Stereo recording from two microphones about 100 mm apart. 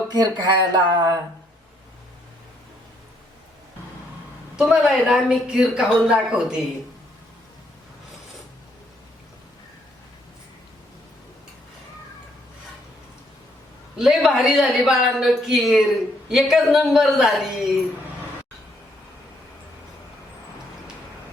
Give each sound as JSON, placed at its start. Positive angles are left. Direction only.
{"t": 0.1, "sound": "speech", "side_deg": -45}
{"t": 4.5, "sound": "a woman's voice", "side_deg": -5}
{"t": 13.9, "sound": "a woman's voice", "side_deg": -5}